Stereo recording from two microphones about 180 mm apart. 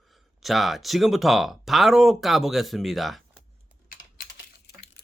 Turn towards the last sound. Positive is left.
turn(degrees=0)  # may be behind; listen again after turning